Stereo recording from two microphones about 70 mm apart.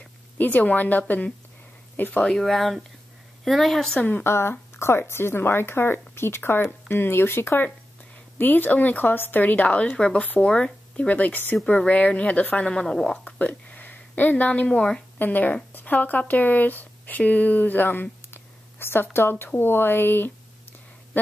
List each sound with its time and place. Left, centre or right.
0.4 s speech: left
2.3 s a woman's voice: centre
4.2 s a woman's voice: left; by 11.1 s centre
11.1 s a woman's voice: left; by 13.2 s centre
13.2 s a woman's voice: left
15.1 s a woman's voice: left